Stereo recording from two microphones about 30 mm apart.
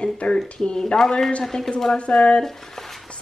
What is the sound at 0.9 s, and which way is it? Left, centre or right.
Speech, centre.